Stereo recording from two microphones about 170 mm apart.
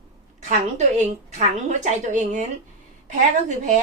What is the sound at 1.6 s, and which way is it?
A woman's voice, 45° right (ahead or behind).